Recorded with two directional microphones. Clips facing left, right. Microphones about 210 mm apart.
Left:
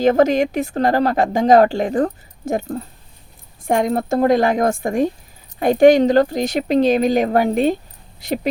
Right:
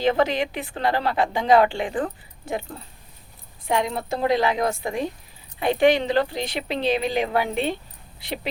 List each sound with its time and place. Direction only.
0.0 s a woman's voice: 45° left (ahead or behind)